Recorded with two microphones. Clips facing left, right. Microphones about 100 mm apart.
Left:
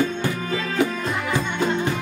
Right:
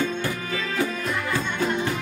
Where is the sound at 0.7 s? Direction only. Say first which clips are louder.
Left 3 dB; 20° left (ahead or behind).